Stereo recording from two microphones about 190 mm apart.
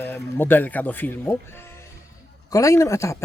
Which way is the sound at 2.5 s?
15° left (ahead or behind).